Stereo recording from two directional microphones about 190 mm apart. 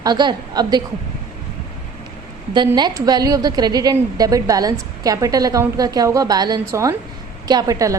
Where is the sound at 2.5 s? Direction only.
25° right (ahead or behind).